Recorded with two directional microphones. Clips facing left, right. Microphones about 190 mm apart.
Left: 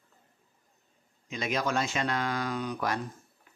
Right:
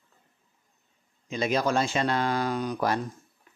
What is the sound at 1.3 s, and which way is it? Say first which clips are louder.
A man's voice: right 5 dB; 35° right (ahead or behind).